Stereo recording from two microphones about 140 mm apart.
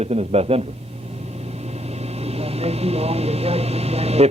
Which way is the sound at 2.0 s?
45° right (ahead or behind).